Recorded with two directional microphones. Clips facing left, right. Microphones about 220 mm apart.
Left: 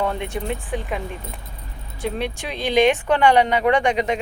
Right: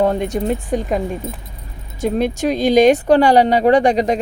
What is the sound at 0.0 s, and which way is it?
Speech, 40° right (ahead or behind).